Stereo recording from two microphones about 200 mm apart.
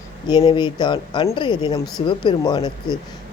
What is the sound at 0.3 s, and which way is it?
Speech, 25° left (ahead or behind).